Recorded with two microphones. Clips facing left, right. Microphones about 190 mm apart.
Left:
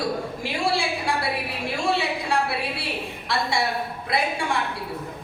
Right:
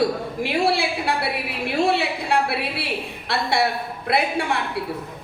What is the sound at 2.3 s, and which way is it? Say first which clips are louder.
A man's voice: right 5 dB; 65° right (ahead or behind).